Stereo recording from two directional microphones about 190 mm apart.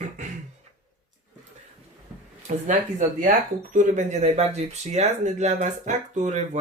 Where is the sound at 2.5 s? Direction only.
40° right (ahead or behind).